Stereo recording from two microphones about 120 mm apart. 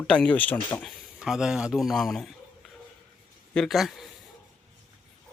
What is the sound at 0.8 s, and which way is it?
Speech, 5° right (ahead or behind).